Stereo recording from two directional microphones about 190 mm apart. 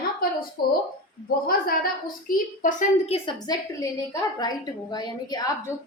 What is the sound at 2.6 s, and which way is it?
Speech, 40° left (ahead or behind).